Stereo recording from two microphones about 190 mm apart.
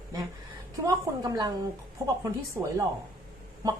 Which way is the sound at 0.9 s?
20° right (ahead or behind).